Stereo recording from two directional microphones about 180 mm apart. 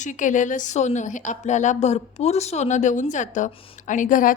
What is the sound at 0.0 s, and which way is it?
Speech, 45° left (ahead or behind).